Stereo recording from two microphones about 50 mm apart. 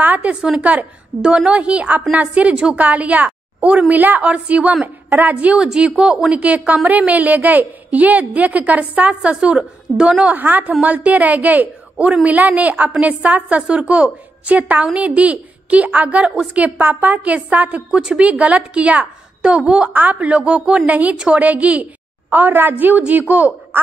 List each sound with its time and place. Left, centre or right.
0.2 s a woman's voice: centre
1.2 s a woman's voice: centre
5.6 s a woman's voice: centre
10.3 s a woman's voice: right
17.9 s a woman's voice: centre
19.4 s a woman's voice: centre
19.9 s a woman's voice: right
22.3 s a woman's voice: right
23.7 s hoot: right